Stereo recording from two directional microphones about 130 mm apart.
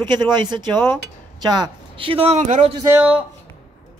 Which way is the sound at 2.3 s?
65° right (ahead or behind).